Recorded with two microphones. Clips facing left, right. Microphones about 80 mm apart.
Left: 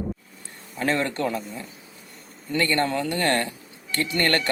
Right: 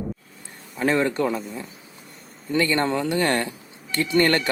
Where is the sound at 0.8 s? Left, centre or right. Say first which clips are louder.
Right 3 dB; centre.